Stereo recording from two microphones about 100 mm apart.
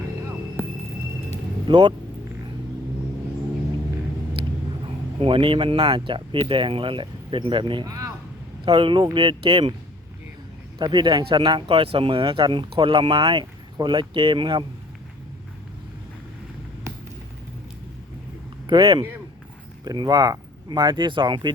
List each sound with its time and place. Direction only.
1.6 s speech: 50° right (ahead or behind)
5.2 s speech: 60° right (ahead or behind)
7.9 s a sound: 35° right (ahead or behind)
8.6 s speech: 60° right (ahead or behind)
10.8 s speech: 45° right (ahead or behind)
11.7 s speech: 70° right (ahead or behind)
18.7 s speech: 40° right (ahead or behind)